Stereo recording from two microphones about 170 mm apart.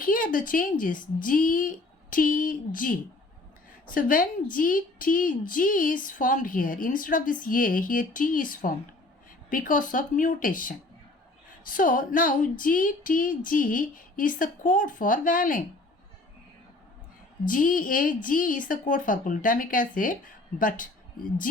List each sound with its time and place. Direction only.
0.0 s a woman's voice: 55° left (ahead or behind)
3.9 s a woman's voice: 55° left (ahead or behind)
17.4 s a woman's voice: 55° left (ahead or behind)